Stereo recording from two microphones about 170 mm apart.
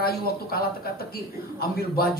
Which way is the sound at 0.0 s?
65° left (ahead or behind).